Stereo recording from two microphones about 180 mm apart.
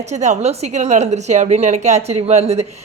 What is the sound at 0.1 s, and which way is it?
A woman's voice, 40° right (ahead or behind).